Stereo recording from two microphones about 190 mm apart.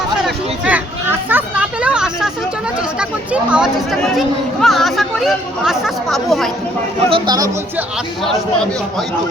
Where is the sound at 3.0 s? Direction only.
5° right (ahead or behind).